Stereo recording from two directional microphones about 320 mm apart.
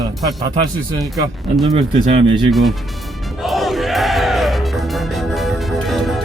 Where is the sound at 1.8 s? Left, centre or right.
Centre.